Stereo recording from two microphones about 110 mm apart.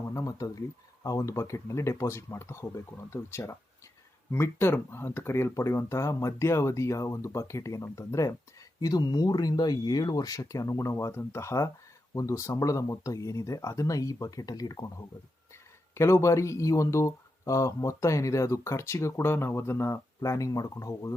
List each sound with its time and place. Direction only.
0.1 s speech: 30° left (ahead or behind)
16.0 s speech: 25° left (ahead or behind)